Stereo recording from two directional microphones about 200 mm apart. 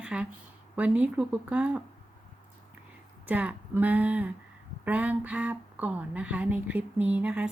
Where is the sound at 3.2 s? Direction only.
5° right (ahead or behind).